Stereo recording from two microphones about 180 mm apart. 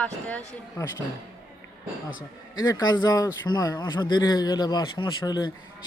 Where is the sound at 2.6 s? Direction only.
20° left (ahead or behind).